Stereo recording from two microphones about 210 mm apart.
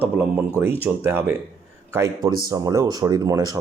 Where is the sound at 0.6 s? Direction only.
10° right (ahead or behind).